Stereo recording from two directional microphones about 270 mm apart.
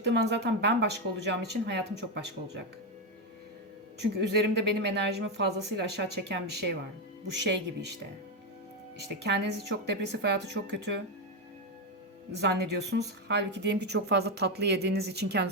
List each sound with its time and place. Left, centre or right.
0.0 s a woman's voice: right
4.0 s a woman's voice: right
9.0 s a woman's voice: right
12.4 s a woman's voice: right